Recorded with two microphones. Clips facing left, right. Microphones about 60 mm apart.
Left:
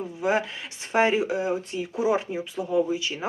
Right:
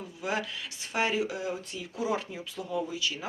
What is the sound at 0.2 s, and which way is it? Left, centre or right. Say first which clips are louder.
Speech: left 7 dB; left.